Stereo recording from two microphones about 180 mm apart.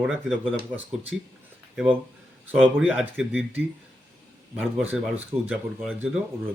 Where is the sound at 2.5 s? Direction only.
Centre (ahead or behind).